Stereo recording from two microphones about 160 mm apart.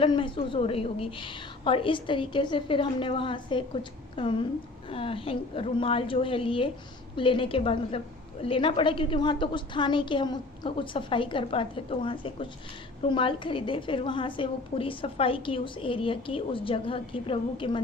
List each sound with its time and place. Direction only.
0.0 s a woman's voice: 30° left (ahead or behind)